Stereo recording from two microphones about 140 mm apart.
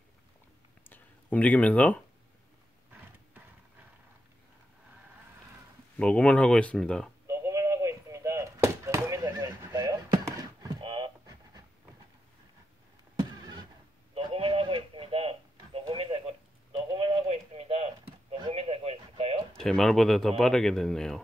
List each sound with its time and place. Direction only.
0.8 s a sound: 10° left (ahead or behind)
5.9 s speech: 5° left (ahead or behind)
7.2 s a sound: 20° right (ahead or behind)
10.8 s pant: 35° right (ahead or behind)
13.2 s vehicle: 30° right (ahead or behind)
14.1 s radio: 40° right (ahead or behind)
19.6 s a man's voice: 5° left (ahead or behind)